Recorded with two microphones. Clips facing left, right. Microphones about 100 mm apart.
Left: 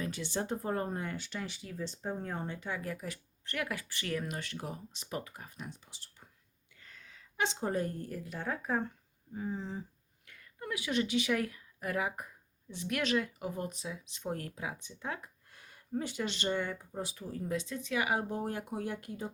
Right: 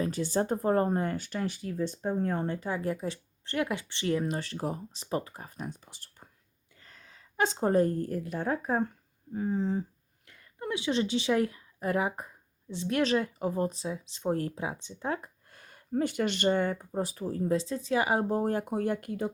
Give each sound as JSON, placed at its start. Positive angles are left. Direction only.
{"t": 0.0, "sound": "speech", "side_deg": -40}
{"t": 2.6, "sound": "speech", "side_deg": -35}
{"t": 6.7, "sound": "a sound", "side_deg": -40}
{"t": 8.3, "sound": "speech", "side_deg": -45}
{"t": 10.2, "sound": "a woman's voice", "side_deg": -30}